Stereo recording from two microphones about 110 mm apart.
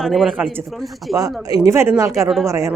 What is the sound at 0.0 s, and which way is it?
Speech, centre (ahead or behind).